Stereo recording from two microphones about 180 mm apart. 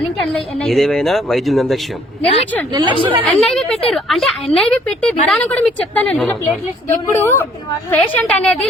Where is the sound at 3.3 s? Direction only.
5° left (ahead or behind).